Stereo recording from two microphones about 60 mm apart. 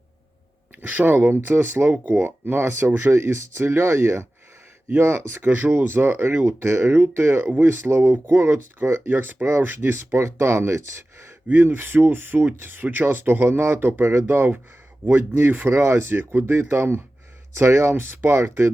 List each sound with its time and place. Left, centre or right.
0.8 s speech: right
3.1 s speech: right
11.6 s speech: right
15.7 s speech: right
17.9 s speech: right
18.3 s speech: right